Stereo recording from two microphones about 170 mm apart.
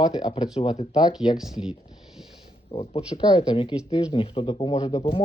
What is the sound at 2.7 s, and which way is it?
Speech, 30° left (ahead or behind).